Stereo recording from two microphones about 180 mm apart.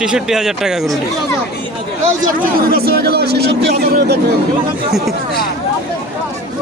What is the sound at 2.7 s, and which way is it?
Speech, 60° right (ahead or behind).